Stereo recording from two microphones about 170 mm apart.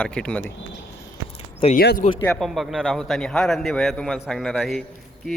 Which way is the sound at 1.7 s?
70° left (ahead or behind).